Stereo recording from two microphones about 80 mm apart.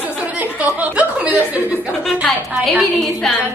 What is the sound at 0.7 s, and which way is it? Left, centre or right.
Chuckle, centre.